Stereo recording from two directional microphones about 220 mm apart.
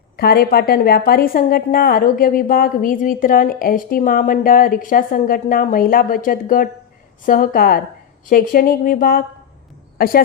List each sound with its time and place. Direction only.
0.2 s a woman's voice: 45° left (ahead or behind)